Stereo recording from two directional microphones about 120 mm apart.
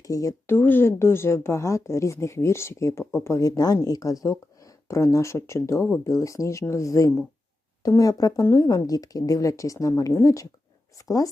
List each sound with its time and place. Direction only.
0.0 s speech: 25° left (ahead or behind)